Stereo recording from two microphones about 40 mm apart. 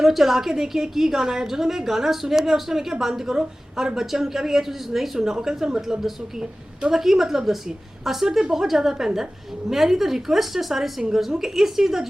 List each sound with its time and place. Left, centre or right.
0.0 s a woman's voice: centre